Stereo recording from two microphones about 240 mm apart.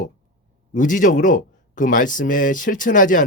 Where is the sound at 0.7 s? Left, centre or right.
Left.